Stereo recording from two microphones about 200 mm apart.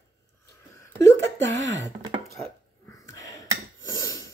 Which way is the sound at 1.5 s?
60° right (ahead or behind).